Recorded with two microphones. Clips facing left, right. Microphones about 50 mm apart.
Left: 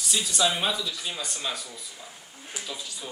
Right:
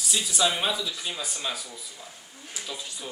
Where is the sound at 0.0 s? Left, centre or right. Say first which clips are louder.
Even; centre.